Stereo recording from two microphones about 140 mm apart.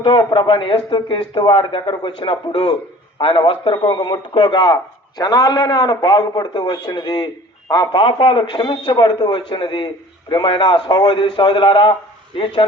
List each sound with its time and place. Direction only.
0.0 s a man's voice: 35° left (ahead or behind)